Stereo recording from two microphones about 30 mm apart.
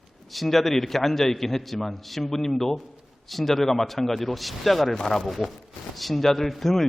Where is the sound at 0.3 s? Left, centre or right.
Centre.